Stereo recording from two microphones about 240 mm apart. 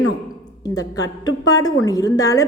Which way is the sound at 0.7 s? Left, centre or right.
Centre.